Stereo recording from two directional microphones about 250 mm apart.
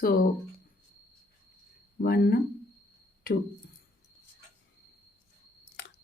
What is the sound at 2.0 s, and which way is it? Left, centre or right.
Speech, left.